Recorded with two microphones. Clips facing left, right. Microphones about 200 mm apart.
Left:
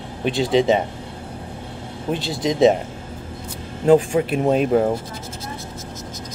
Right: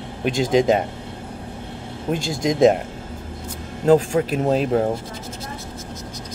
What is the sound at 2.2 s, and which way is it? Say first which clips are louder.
Speech: even; 45° right (ahead or behind).